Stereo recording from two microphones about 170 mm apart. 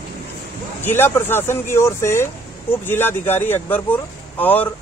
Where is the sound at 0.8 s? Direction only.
15° left (ahead or behind).